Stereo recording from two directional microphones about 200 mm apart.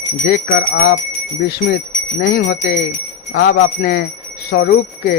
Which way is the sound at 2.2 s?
50° left (ahead or behind).